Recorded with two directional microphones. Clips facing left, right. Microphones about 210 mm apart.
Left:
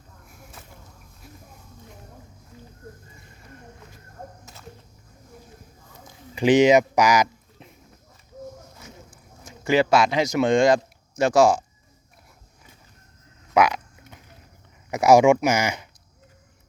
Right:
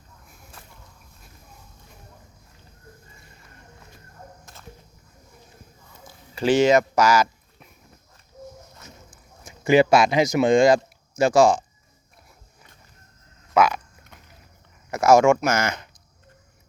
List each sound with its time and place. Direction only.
6.3 s speech: 15° left (ahead or behind)
9.6 s speech: 10° right (ahead or behind); by 11.6 s 5° left (ahead or behind)
13.5 s a sound: 15° left (ahead or behind)
14.8 s speech: 15° left (ahead or behind)